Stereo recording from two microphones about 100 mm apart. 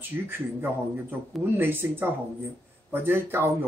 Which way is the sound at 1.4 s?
20° right (ahead or behind).